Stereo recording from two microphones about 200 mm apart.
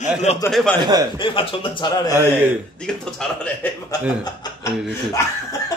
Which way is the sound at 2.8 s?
5° left (ahead or behind).